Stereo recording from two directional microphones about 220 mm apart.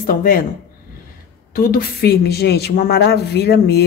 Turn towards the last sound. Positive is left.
turn(degrees=45)  # may be behind; listen again after turning